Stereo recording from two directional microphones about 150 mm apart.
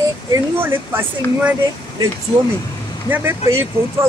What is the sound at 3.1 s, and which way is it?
Speech, 15° right (ahead or behind).